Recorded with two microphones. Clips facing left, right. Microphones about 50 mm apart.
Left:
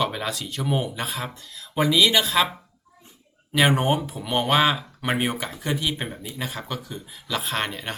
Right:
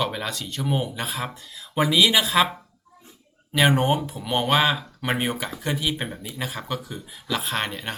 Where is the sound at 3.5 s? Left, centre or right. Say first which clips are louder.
Even; centre.